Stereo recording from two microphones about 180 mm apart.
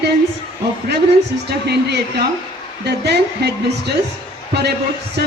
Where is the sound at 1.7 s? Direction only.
65° right (ahead or behind).